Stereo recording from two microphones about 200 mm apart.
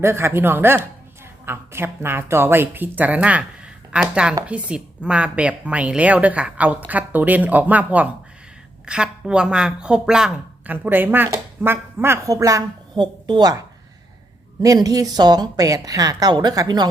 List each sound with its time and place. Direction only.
0.0 s speech: 10° right (ahead or behind)
14.6 s speech: 20° right (ahead or behind)